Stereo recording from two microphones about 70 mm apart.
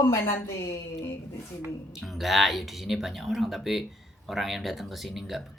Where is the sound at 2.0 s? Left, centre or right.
Centre.